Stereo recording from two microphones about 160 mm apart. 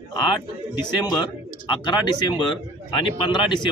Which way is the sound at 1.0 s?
25° left (ahead or behind).